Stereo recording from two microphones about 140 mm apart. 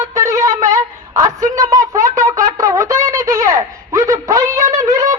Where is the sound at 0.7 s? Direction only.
25° right (ahead or behind).